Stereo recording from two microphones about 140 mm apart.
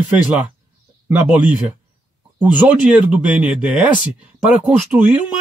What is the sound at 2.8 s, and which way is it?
Speech, 10° right (ahead or behind).